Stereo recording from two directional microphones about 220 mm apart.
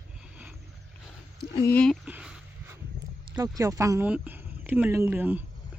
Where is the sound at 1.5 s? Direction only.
15° left (ahead or behind).